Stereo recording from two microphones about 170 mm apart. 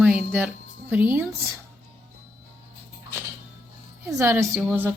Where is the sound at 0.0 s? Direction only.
5° right (ahead or behind).